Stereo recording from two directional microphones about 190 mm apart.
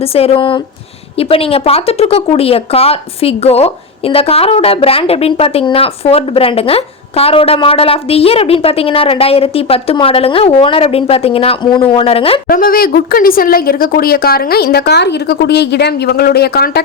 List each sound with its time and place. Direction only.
0.1 s speech: 30° left (ahead or behind)
12.5 s speech: 50° left (ahead or behind)